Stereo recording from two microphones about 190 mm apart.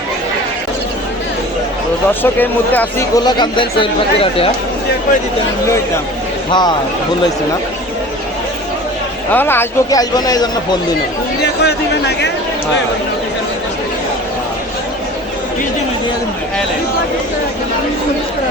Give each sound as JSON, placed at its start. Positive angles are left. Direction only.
{"t": 2.2, "sound": "speech", "side_deg": 10}
{"t": 3.2, "sound": "speech", "side_deg": 25}
{"t": 6.5, "sound": "speech", "side_deg": 20}
{"t": 9.3, "sound": "speech", "side_deg": 10}
{"t": 11.6, "sound": "a man's voice", "side_deg": 60}